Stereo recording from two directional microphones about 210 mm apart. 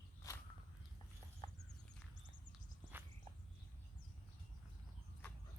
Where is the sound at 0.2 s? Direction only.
15° left (ahead or behind).